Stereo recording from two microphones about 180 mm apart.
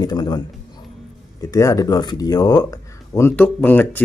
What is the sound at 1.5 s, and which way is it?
A man's voice, 20° left (ahead or behind).